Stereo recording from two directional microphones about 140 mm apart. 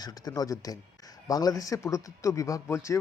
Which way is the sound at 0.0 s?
30° left (ahead or behind).